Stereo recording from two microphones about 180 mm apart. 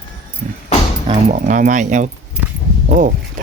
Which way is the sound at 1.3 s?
45° right (ahead or behind).